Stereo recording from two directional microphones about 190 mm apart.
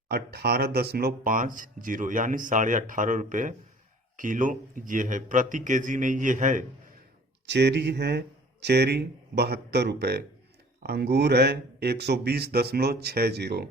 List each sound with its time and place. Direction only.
0.1 s speech: 55° right (ahead or behind)
7.4 s speech: 65° right (ahead or behind)